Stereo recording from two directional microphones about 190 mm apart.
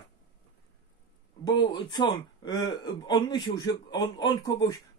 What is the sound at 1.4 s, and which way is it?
Speech, 25° left (ahead or behind).